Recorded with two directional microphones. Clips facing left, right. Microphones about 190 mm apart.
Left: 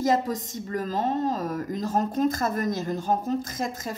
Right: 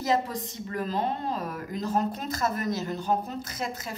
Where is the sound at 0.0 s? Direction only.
45° left (ahead or behind).